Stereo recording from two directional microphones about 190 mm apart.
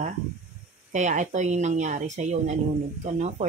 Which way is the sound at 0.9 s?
40° right (ahead or behind).